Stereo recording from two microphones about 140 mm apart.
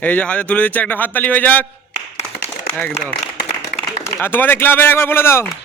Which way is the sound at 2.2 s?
10° left (ahead or behind).